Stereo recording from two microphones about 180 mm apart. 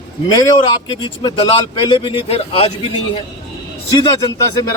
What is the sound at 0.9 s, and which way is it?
A man's voice, 25° left (ahead or behind).